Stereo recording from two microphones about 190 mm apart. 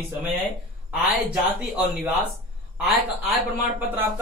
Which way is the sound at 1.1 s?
10° right (ahead or behind).